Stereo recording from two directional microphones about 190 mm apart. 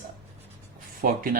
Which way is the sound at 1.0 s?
50° right (ahead or behind).